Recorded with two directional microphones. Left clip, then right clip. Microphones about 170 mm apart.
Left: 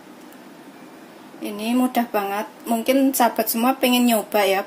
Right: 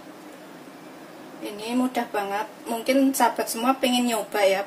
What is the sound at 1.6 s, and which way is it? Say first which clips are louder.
Speech: left 5 dB; 45° left (ahead or behind).